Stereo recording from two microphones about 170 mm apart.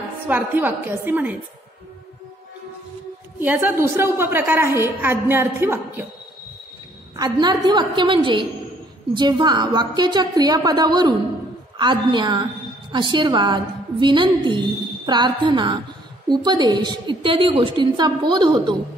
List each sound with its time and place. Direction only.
0.3 s a woman's voice: 10° right (ahead or behind)
3.3 s a woman's voice: 10° right (ahead or behind)
7.2 s a woman's voice: 25° right (ahead or behind)